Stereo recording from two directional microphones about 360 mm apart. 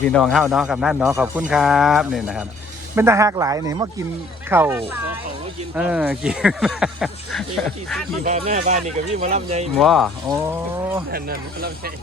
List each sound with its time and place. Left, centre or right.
0.0 s speech: centre
8.2 s speech: centre
9.7 s speech: centre
10.3 s speech: centre
11.1 s speech: right